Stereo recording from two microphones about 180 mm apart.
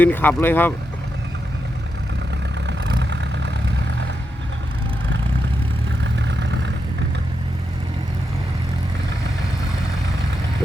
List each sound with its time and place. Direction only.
0.0 s speech: 10° left (ahead or behind)
2.6 s vehicle: 75° right (ahead or behind)
6.2 s vehicle: 80° right